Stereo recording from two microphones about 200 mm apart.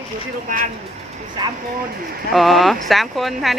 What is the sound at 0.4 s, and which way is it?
Speech, 40° right (ahead or behind).